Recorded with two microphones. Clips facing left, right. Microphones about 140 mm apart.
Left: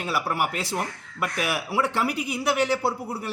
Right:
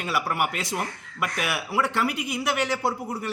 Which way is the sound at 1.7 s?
Centre (ahead or behind).